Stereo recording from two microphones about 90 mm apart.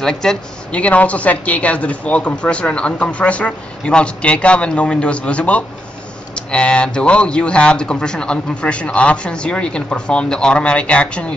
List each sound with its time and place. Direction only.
0.0 s a woman's voice: 5° left (ahead or behind)